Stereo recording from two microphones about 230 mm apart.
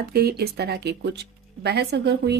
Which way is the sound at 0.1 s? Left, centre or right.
Right.